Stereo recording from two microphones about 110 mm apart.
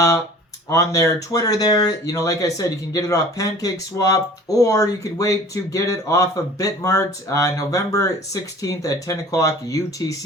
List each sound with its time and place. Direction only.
0.7 s speech: 30° left (ahead or behind)